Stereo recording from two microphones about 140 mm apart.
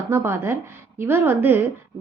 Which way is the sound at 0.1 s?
20° right (ahead or behind).